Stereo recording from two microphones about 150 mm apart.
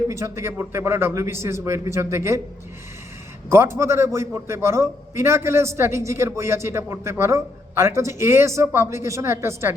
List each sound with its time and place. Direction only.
0.1 s a man's voice: 20° right (ahead or behind)
3.5 s a man's voice: 15° right (ahead or behind)